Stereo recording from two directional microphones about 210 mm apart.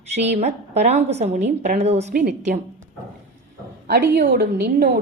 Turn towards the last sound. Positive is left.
turn(degrees=-45)  # may be behind; listen again after turning